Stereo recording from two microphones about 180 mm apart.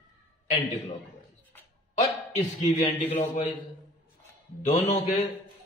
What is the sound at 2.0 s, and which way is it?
A man's voice, 40° left (ahead or behind).